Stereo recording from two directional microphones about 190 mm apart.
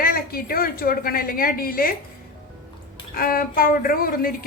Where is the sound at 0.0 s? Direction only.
50° left (ahead or behind).